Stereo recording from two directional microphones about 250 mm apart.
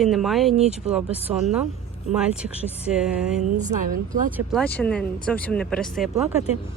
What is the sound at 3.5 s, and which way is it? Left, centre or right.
Speech, right.